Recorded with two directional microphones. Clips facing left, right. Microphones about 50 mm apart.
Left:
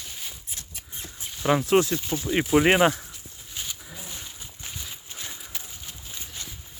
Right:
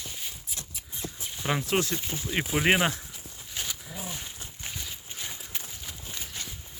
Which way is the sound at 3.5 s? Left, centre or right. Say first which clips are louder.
Right 1 dB; right.